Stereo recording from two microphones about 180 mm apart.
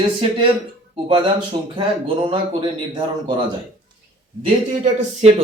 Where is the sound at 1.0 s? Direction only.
25° right (ahead or behind).